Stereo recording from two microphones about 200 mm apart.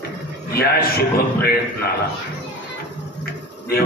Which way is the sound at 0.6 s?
50° left (ahead or behind).